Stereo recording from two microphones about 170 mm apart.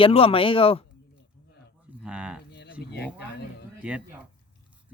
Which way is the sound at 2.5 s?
85° left.